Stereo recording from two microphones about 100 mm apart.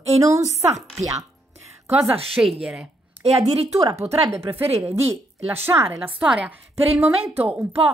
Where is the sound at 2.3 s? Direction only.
Centre (ahead or behind).